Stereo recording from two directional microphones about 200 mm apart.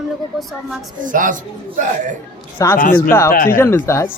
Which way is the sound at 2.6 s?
15° left (ahead or behind).